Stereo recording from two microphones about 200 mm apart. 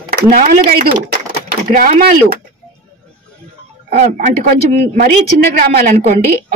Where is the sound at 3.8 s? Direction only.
50° right (ahead or behind).